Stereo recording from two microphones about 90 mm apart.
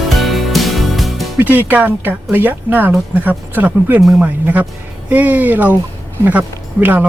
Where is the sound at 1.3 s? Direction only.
20° right (ahead or behind).